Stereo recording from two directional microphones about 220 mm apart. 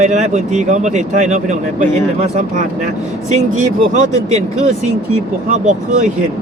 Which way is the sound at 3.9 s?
30° right (ahead or behind).